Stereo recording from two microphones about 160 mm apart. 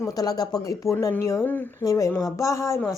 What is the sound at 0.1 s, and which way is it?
A woman's voice, 25° left (ahead or behind).